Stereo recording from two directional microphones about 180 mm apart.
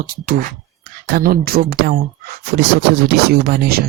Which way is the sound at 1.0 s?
55° right (ahead or behind).